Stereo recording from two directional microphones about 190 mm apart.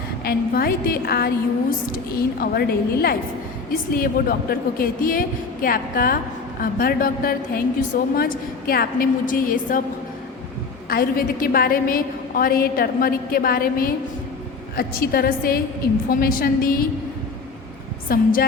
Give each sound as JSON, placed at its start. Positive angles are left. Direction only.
{"t": 0.3, "sound": "a woman's voice", "side_deg": 55}
{"t": 10.8, "sound": "a woman's voice", "side_deg": 50}
{"t": 18.1, "sound": "a woman's voice", "side_deg": 50}